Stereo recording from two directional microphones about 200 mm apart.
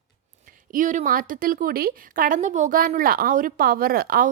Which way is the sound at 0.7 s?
40° right (ahead or behind).